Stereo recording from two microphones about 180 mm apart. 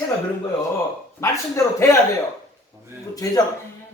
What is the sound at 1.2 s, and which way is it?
Speech, 15° left (ahead or behind).